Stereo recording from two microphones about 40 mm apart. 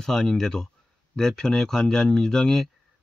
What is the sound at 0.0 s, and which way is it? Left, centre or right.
Speech, centre.